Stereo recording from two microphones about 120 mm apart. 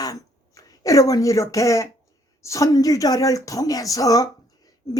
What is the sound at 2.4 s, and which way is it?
Speech, 25° left (ahead or behind).